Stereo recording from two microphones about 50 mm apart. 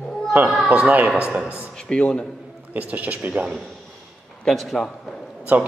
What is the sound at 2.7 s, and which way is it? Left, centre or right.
Speech, right.